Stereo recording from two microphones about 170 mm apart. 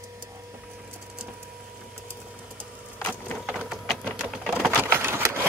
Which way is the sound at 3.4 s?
Centre (ahead or behind).